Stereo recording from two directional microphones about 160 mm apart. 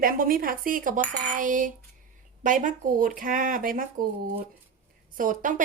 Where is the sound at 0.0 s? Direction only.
65° right (ahead or behind).